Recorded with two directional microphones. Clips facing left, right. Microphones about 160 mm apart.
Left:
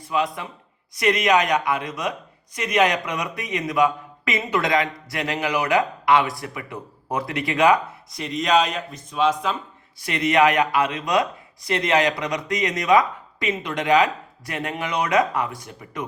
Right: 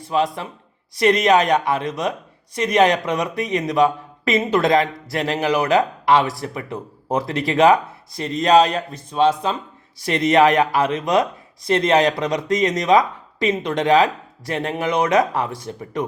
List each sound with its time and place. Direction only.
0.1 s a man's voice: 30° right (ahead or behind)